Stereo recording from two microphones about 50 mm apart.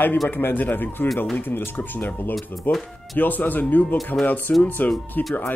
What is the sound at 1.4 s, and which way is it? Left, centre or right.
Speech, left.